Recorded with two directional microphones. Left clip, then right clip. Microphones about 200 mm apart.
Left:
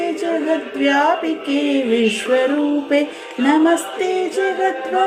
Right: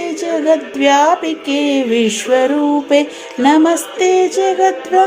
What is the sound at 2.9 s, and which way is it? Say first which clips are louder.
A capella: right 5 dB; 45° right (ahead or behind).